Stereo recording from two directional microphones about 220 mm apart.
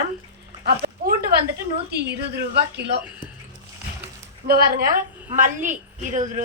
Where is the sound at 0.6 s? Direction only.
45° right (ahead or behind).